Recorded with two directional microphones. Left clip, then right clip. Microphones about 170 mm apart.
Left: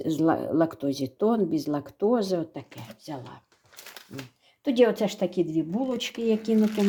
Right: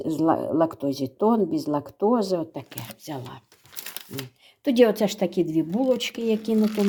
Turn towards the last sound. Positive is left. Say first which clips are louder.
# right 1 dB
turn(degrees=-10)  # may be behind; listen again after turning